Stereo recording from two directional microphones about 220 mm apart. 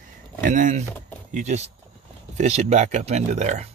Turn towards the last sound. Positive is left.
turn(degrees=-30)  # may be behind; listen again after turning